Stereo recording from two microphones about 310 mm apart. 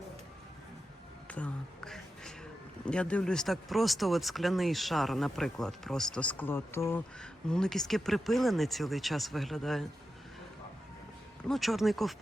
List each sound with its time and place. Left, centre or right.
1.3 s a sound: centre
2.8 s speech: centre
11.4 s speech: centre